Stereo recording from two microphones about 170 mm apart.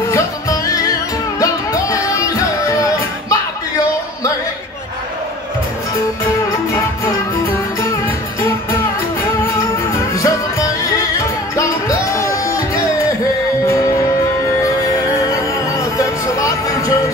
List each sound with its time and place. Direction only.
0.1 s music: 20° left (ahead or behind)
6.2 s music: 20° left (ahead or behind)
9.5 s music: 20° left (ahead or behind)
15.2 s music: 20° left (ahead or behind)